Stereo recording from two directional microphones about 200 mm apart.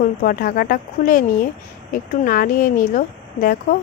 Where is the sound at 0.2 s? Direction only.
45° left (ahead or behind).